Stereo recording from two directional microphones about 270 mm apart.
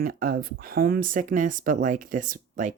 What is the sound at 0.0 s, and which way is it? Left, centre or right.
Speech, right.